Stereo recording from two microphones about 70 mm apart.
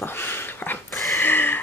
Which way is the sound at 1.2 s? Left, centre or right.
Left.